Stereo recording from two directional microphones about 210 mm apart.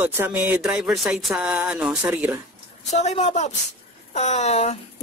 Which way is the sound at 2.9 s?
30° left (ahead or behind).